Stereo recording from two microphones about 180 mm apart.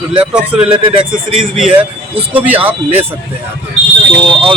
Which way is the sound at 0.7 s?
30° right (ahead or behind).